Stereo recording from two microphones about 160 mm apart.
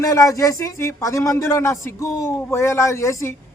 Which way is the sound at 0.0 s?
20° left (ahead or behind).